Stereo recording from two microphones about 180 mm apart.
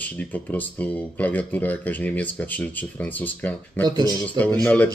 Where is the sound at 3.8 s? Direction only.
20° right (ahead or behind).